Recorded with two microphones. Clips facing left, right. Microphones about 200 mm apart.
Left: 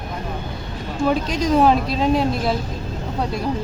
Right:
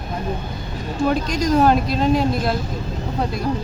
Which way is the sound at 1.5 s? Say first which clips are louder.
Even; centre (ahead or behind).